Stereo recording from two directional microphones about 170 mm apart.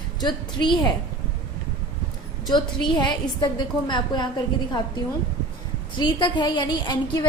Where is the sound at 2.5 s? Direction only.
25° left (ahead or behind).